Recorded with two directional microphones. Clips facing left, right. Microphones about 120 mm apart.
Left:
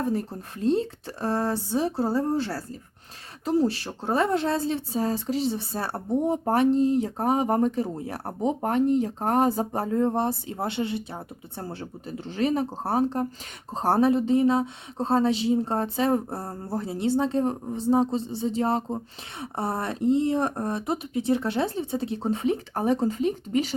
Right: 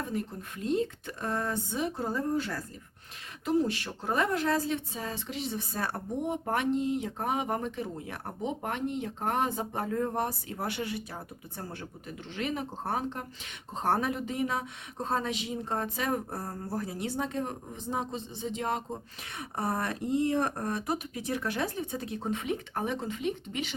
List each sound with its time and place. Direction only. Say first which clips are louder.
0.0 s speech: left 7 dB; 35° left (ahead or behind)